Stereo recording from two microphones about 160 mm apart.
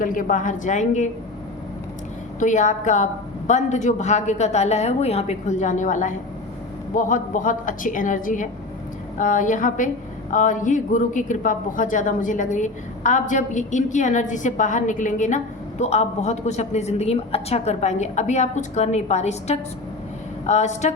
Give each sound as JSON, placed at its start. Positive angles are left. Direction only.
{"t": 0.0, "sound": "speech", "side_deg": 55}
{"t": 2.4, "sound": "a woman's voice", "side_deg": 50}